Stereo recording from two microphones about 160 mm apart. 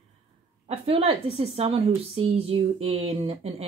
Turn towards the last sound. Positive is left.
turn(degrees=-40)  # may be behind; listen again after turning